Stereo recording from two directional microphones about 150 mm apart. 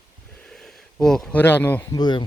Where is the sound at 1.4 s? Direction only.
15° left (ahead or behind).